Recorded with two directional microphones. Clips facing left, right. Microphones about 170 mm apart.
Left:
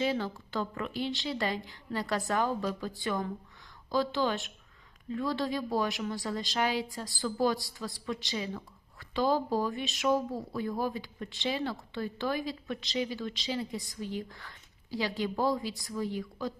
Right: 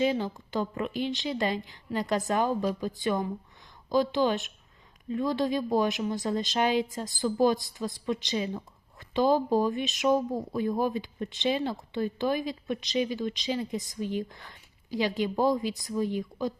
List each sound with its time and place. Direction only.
0.0 s speech: 20° right (ahead or behind)